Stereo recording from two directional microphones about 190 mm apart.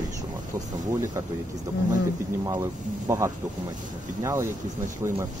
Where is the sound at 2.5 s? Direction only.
15° right (ahead or behind).